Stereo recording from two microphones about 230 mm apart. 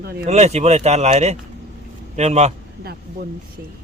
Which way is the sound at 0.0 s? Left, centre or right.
Right.